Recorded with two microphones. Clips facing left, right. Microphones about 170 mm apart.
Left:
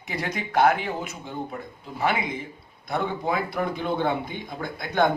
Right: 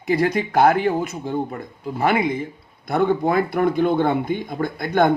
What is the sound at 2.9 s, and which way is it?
Speech, 55° right (ahead or behind).